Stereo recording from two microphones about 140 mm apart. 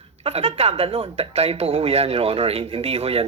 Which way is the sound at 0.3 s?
50° right (ahead or behind).